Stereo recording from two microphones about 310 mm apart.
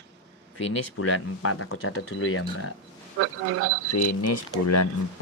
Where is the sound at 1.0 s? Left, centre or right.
Left.